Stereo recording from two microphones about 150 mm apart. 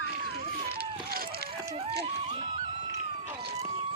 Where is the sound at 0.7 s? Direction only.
85° right.